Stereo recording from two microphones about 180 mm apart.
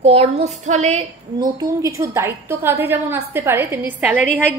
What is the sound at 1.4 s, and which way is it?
A woman's voice, 20° right (ahead or behind).